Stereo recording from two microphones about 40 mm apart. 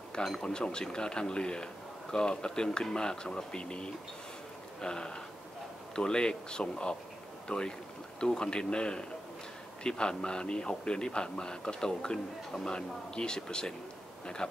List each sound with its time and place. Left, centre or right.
0.4 s a man's voice: centre